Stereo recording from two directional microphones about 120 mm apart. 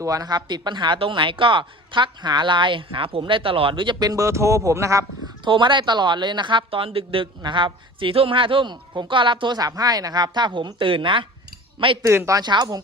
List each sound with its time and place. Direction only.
0.0 s speech: 30° right (ahead or behind)
5.5 s speech: 45° right (ahead or behind)
12.0 s speech: 25° right (ahead or behind)
12.4 s speech: 35° right (ahead or behind)